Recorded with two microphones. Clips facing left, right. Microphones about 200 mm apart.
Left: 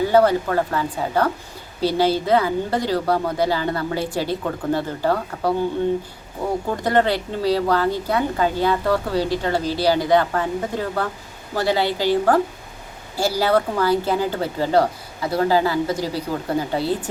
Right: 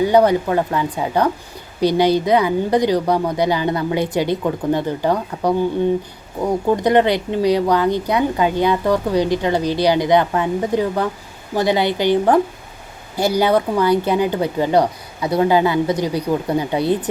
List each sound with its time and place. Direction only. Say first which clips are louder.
0.0 s speech: right 2 dB; 15° right (ahead or behind)
6.8 s speech: right 2 dB; 15° right (ahead or behind)